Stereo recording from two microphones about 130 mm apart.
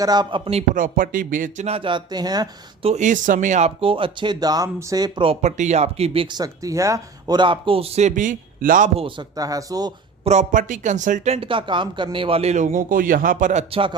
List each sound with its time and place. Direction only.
0.0 s speech: 30° right (ahead or behind)
0.7 s speech: 90° right
1.6 s speech: 45° right (ahead or behind)
2.8 s speech: 65° right (ahead or behind)
3.8 s speech: 45° right (ahead or behind)
5.2 s a man's voice: 55° right (ahead or behind)
6.3 s speech: 25° right (ahead or behind); by 8.9 s 90° right
9.4 s speech: 25° right (ahead or behind)
10.2 s speech: 75° right (ahead or behind)
11.3 s a man's voice: 40° right (ahead or behind); by 13.7 s 75° right (ahead or behind)